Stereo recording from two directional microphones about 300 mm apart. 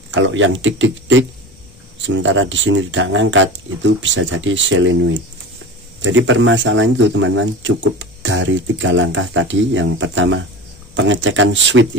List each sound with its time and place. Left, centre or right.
0.1 s speech: right